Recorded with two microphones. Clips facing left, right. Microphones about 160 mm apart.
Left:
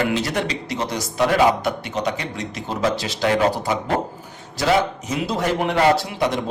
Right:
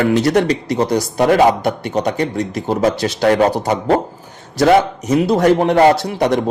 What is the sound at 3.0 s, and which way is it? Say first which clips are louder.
Speech: right 7 dB; 65° right (ahead or behind).